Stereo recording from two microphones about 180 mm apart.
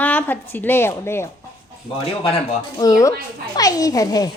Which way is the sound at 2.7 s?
20° left (ahead or behind).